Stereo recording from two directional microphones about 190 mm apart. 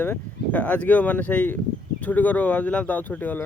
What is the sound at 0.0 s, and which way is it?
Speech, 10° left (ahead or behind).